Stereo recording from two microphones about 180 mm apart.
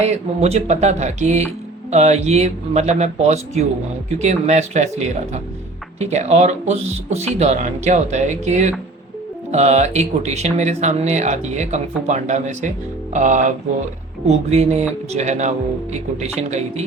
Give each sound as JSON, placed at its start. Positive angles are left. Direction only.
{"t": 0.0, "sound": "speech", "side_deg": -35}